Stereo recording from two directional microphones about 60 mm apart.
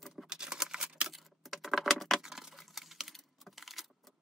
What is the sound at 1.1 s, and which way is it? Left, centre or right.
Typing, centre.